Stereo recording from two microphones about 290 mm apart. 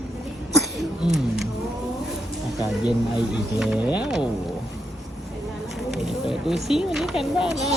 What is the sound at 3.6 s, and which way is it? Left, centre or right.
Speech, centre.